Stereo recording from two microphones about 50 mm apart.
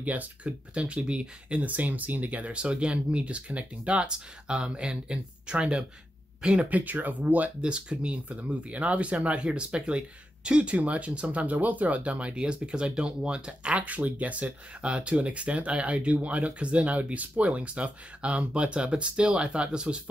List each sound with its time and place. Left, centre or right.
0.0 s speech: right
6.7 s speech: right; by 20.0 s centre